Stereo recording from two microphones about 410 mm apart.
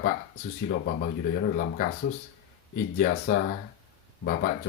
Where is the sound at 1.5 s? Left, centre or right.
Centre.